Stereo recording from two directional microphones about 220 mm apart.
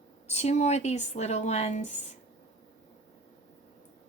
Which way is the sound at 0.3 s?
30° left (ahead or behind).